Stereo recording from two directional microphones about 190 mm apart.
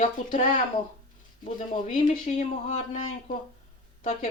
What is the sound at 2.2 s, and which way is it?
Speech, 30° left (ahead or behind).